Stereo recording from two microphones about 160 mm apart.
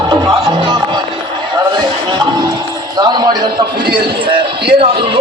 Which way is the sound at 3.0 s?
25° right (ahead or behind).